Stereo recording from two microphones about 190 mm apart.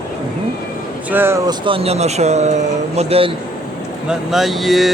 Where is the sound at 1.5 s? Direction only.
25° right (ahead or behind).